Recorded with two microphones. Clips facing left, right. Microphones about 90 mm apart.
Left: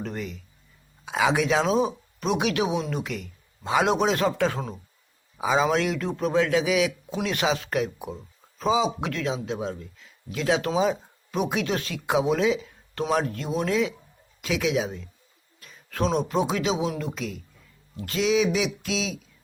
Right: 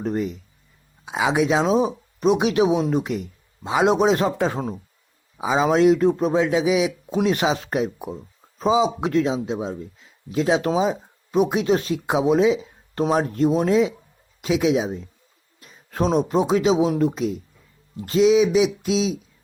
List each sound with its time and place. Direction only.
0.0 s speech: 30° right (ahead or behind)
1.0 s speech: 15° right (ahead or behind)
5.4 s speech: 15° right (ahead or behind)
5.6 s speech: 30° right (ahead or behind)
15.6 s a sound: 25° right (ahead or behind)
16.1 s speech: 30° right (ahead or behind)